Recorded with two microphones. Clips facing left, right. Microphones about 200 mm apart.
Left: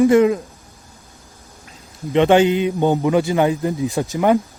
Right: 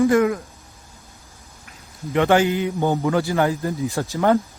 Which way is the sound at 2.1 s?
20° left (ahead or behind).